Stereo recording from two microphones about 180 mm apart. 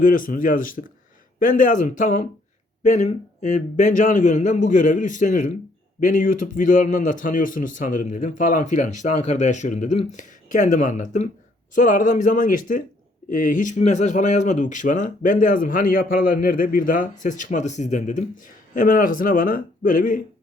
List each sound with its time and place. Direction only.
0.0 s speech: 50° left (ahead or behind)